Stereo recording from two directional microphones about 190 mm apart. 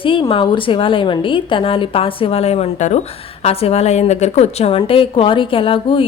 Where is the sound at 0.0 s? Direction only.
25° left (ahead or behind).